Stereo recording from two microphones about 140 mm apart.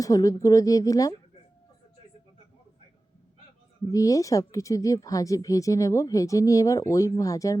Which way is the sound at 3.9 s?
25° left (ahead or behind).